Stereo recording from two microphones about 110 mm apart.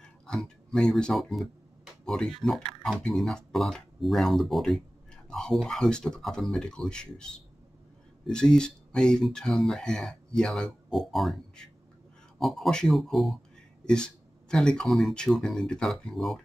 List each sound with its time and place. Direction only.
0.0 s speech: 5° left (ahead or behind)